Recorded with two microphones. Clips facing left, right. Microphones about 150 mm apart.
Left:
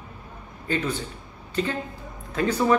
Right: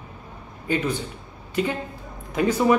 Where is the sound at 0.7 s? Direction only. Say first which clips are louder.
Right 2 dB; 15° right (ahead or behind).